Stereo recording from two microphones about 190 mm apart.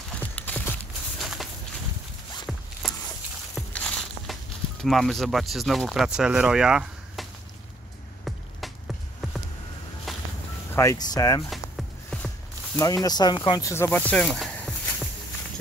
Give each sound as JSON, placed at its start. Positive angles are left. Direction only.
{"t": 0.2, "sound": "clip-clop", "side_deg": 10}
{"t": 1.2, "sound": "a sound", "side_deg": 0}
{"t": 3.5, "sound": "walk", "side_deg": 0}
{"t": 4.8, "sound": "speech", "side_deg": 0}
{"t": 8.5, "sound": "music", "side_deg": 0}
{"t": 10.1, "sound": "a sound", "side_deg": 0}
{"t": 10.7, "sound": "speech", "side_deg": 15}
{"t": 11.5, "sound": "a sound", "side_deg": 0}
{"t": 13.0, "sound": "speech", "side_deg": 20}